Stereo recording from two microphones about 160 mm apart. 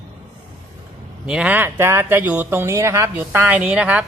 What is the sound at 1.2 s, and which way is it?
Speech, 5° right (ahead or behind).